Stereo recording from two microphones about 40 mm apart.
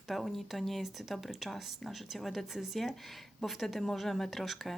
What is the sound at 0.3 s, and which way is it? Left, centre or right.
A woman's voice, centre.